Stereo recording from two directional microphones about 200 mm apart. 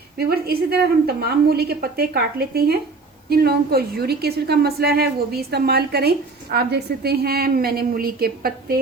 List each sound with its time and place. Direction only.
0.2 s a woman's voice: 50° right (ahead or behind)